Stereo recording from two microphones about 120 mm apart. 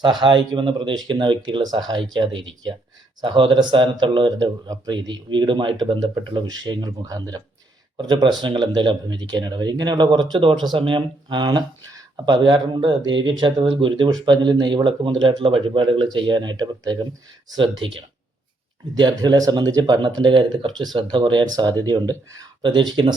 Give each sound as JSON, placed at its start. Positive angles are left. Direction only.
{"t": 0.0, "sound": "speech", "side_deg": -40}
{"t": 17.6, "sound": "speech", "side_deg": -45}